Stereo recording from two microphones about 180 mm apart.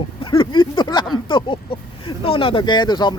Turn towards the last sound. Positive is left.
turn(degrees=25)  # may be behind; listen again after turning